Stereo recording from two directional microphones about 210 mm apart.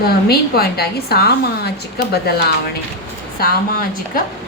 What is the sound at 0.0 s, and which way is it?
A woman's voice, 45° left (ahead or behind).